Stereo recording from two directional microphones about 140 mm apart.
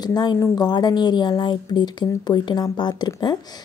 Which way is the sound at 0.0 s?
30° left (ahead or behind).